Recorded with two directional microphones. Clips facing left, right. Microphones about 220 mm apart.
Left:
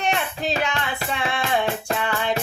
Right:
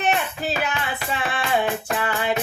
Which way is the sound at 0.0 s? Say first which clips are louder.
Right 1 dB; 5° right (ahead or behind).